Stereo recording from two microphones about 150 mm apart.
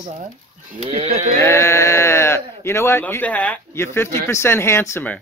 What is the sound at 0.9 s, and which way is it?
Livestock, 45° right (ahead or behind).